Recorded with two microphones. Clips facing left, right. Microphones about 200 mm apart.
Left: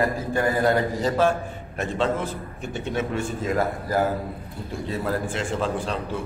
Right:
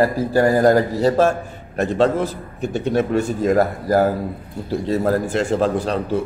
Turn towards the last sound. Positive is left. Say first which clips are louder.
# right 7 dB
turn(degrees=-40)  # may be behind; listen again after turning